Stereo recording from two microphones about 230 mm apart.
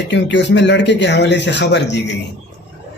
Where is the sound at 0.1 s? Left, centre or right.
Left.